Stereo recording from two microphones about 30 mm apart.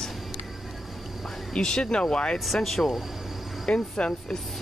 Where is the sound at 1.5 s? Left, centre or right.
Left.